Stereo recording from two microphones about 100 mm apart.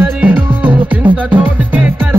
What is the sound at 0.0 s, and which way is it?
Music, 15° right (ahead or behind).